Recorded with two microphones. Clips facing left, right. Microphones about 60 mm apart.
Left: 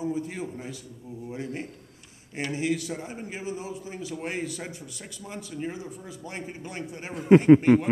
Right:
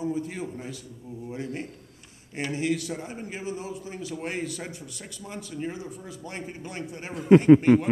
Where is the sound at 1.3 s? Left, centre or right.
Centre.